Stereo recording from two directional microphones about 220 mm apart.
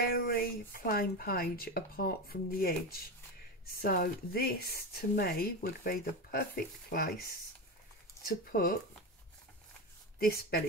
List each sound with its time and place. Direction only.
0.0 s speech: 45° left (ahead or behind)
8.5 s speech: 45° left (ahead or behind)
10.1 s speech: 45° left (ahead or behind)